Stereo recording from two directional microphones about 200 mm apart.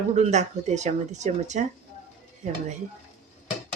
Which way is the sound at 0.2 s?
35° right (ahead or behind).